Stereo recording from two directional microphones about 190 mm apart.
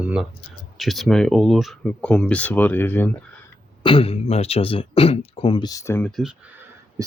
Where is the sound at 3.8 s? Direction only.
30° left (ahead or behind); by 6.4 s centre (ahead or behind).